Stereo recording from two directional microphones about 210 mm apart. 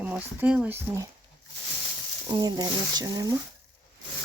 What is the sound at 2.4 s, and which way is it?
Speech, 20° right (ahead or behind).